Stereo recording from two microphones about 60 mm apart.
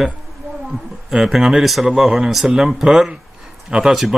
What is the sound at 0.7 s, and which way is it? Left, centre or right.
A man's voice, centre.